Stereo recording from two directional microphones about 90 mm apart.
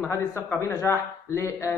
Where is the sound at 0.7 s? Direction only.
35° left (ahead or behind).